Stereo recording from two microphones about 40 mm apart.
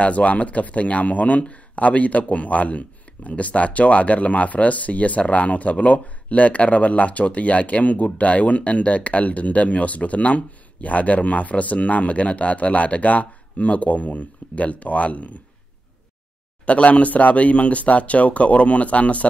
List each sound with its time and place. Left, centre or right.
0.0 s speech: left
16.6 s speech: left